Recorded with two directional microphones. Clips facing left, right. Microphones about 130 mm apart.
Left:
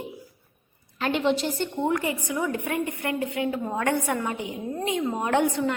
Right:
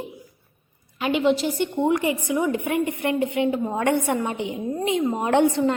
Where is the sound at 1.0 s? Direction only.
5° right (ahead or behind).